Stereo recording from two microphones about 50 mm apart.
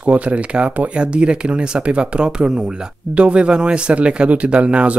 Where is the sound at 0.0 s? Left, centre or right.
Right.